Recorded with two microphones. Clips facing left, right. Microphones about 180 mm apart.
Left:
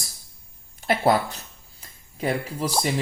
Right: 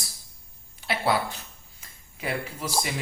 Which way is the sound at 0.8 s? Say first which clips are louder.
Left 5 dB; 45° left (ahead or behind).